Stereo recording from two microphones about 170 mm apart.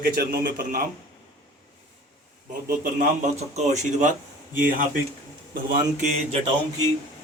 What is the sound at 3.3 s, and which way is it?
Speech, 40° right (ahead or behind).